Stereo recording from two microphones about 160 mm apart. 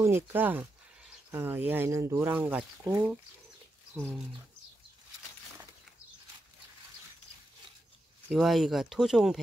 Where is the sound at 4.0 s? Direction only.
Centre (ahead or behind).